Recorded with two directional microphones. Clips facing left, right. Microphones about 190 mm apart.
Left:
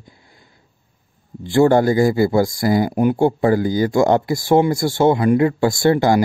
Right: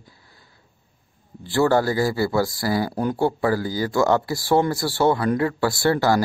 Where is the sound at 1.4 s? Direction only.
20° left (ahead or behind).